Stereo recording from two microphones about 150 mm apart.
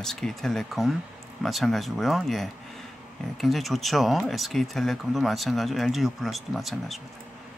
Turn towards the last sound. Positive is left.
turn(degrees=0)  # may be behind; listen again after turning